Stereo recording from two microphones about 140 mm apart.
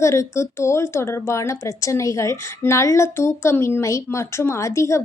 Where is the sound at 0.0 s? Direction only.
20° left (ahead or behind).